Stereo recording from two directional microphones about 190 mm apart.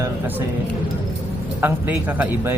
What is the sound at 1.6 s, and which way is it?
Speech, 10° right (ahead or behind).